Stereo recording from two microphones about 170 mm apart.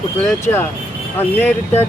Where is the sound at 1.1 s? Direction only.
10° left (ahead or behind).